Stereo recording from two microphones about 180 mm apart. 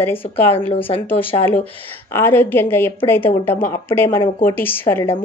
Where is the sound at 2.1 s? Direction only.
10° left (ahead or behind).